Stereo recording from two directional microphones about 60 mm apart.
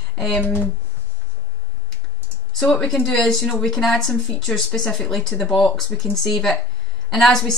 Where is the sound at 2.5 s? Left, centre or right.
Centre.